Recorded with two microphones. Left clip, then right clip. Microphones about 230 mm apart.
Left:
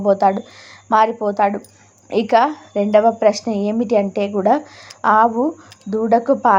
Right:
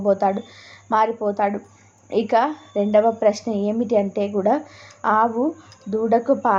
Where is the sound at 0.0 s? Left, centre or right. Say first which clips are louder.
Left 4 dB; centre.